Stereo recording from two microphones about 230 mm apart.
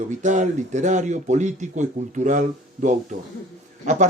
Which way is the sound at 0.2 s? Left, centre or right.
Right.